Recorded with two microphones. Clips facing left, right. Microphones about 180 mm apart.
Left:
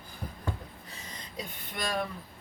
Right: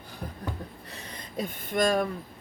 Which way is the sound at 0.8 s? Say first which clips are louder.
Right 4 dB; 55° right (ahead or behind).